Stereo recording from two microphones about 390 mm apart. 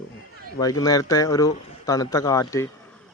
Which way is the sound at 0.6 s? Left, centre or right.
Centre.